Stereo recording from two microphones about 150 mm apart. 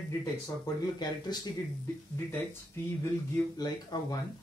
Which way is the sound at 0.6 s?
25° left (ahead or behind).